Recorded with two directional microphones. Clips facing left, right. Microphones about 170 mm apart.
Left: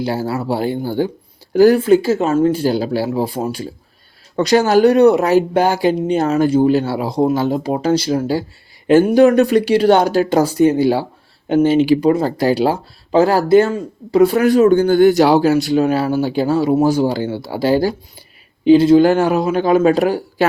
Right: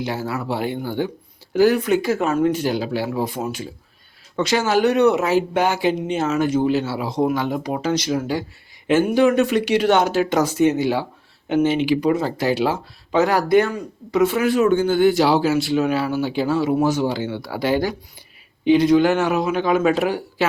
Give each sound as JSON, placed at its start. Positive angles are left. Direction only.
{"t": 0.0, "sound": "speech", "side_deg": 35}